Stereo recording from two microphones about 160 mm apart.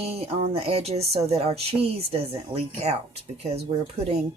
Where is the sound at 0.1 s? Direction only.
40° right (ahead or behind).